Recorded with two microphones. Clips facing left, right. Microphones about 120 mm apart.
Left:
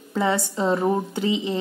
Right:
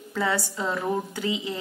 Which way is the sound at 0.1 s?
25° left (ahead or behind).